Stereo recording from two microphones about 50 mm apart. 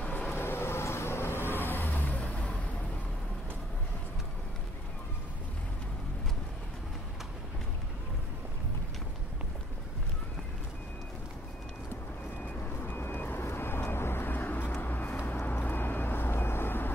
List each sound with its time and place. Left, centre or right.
0.3 s vehicle: left
12.8 s vehicle: left